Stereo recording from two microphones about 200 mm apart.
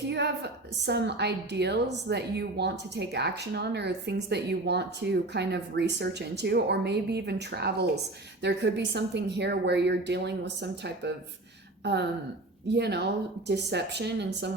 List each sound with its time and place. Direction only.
0.1 s a woman's voice: 55° right (ahead or behind)
12.7 s a woman's voice: 55° right (ahead or behind)